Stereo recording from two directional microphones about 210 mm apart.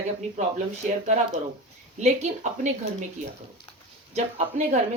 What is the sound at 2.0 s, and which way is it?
Speech, 35° right (ahead or behind).